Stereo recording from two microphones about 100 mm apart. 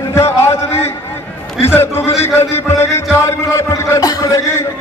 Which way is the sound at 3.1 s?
30° left (ahead or behind).